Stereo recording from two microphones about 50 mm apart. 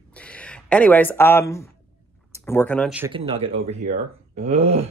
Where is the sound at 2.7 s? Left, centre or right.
Left.